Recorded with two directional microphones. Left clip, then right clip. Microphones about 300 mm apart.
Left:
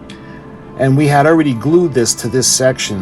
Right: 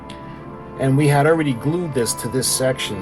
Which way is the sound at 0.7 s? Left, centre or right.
Left.